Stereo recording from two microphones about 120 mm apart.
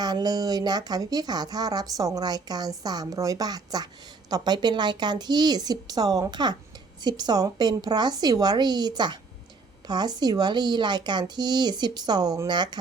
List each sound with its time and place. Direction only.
0.0 s speech: 35° right (ahead or behind)